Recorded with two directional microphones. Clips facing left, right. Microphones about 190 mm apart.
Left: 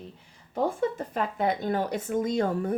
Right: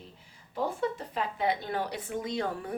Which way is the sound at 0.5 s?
50° left (ahead or behind).